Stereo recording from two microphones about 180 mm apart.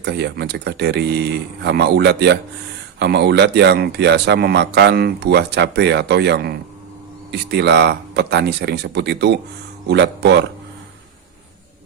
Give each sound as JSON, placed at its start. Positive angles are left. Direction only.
{"t": 0.0, "sound": "speech", "side_deg": -70}